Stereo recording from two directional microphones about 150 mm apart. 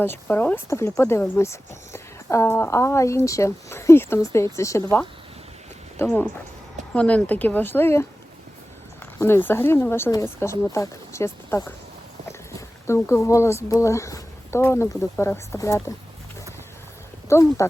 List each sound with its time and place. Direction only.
0.0 s speech: 15° left (ahead or behind)
6.0 s speech: 10° left (ahead or behind)
9.1 s speech: 15° left (ahead or behind)
17.2 s speech: 20° left (ahead or behind)